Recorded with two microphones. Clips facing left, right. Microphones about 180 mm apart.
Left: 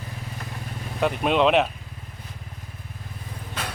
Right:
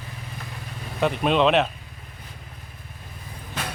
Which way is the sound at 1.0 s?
10° left (ahead or behind).